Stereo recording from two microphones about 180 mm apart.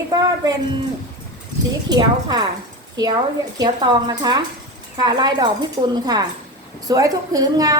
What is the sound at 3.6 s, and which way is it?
A woman's voice, 25° right (ahead or behind).